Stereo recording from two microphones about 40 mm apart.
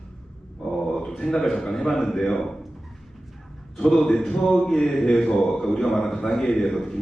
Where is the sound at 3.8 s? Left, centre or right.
Centre.